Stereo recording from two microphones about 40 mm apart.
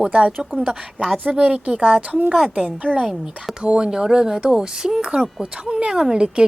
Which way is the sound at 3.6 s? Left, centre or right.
Right.